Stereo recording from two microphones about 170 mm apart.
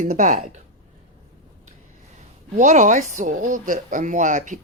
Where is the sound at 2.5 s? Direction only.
45° right (ahead or behind).